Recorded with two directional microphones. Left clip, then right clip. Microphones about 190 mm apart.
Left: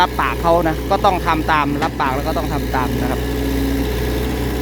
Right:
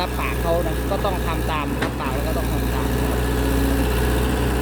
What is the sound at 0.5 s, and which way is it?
Speech, 40° left (ahead or behind).